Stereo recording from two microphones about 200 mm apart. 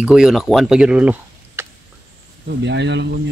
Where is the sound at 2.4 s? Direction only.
60° right (ahead or behind).